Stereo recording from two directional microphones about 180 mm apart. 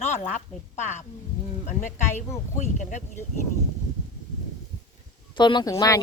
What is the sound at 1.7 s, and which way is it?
Speech, 45° left (ahead or behind).